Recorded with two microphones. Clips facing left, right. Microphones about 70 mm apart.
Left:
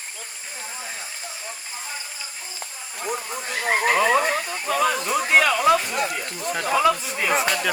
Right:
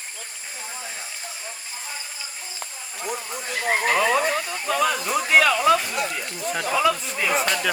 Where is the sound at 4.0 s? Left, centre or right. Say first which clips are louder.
Left 1 dB; left.